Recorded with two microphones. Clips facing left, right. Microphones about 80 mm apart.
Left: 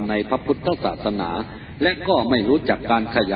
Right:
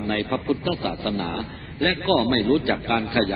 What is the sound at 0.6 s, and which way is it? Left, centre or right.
A man's voice, left.